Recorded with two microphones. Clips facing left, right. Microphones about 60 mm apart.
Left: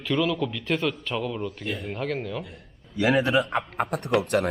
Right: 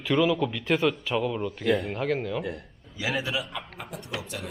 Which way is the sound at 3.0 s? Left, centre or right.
Left.